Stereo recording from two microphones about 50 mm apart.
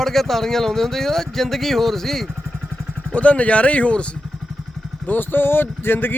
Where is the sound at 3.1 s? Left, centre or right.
Left.